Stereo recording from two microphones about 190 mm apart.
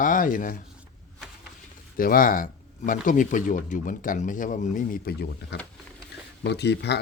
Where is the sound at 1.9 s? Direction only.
50° left (ahead or behind).